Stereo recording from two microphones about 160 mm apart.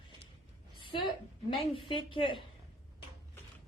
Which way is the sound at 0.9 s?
35° left (ahead or behind).